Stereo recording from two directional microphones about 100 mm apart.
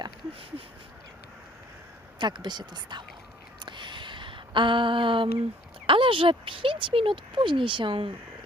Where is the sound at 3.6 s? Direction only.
50° right (ahead or behind).